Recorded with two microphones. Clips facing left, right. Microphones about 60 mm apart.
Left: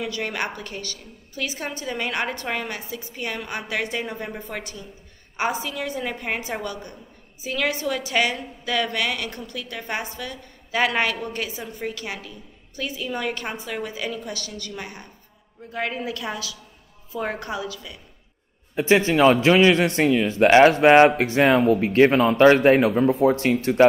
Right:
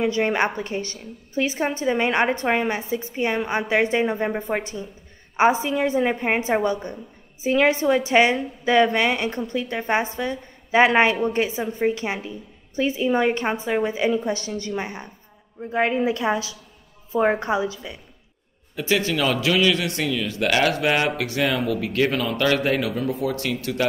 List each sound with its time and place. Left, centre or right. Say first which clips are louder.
0.0 s a woman's voice: right 7 dB; right
18.8 s speech: left 5 dB; left